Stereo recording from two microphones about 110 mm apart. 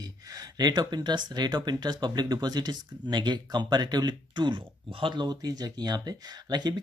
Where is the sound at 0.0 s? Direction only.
35° right (ahead or behind).